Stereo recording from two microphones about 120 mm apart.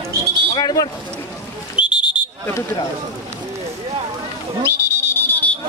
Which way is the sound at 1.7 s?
10° right (ahead or behind).